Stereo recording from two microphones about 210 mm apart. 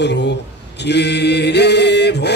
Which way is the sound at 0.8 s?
55° left (ahead or behind).